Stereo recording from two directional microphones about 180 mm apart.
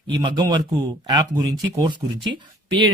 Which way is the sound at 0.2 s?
25° right (ahead or behind).